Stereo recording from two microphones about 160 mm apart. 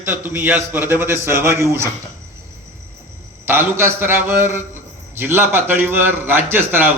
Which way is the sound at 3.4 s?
15° right (ahead or behind).